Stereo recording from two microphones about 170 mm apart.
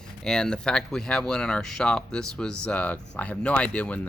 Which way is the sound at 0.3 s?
5° left (ahead or behind).